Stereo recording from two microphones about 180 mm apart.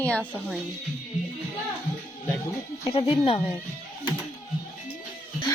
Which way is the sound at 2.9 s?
30° left (ahead or behind).